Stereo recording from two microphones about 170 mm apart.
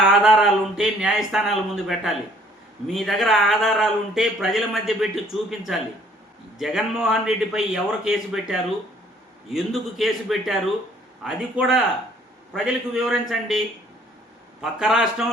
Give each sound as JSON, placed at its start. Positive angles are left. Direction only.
{"t": 0.1, "sound": "a man's voice", "side_deg": -5}